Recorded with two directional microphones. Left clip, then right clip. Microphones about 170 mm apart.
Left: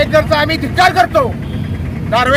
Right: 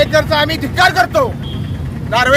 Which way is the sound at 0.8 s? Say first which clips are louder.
Left 1 dB; 10° right (ahead or behind).